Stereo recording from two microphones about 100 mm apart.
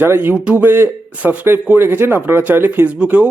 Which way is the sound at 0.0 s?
20° right (ahead or behind).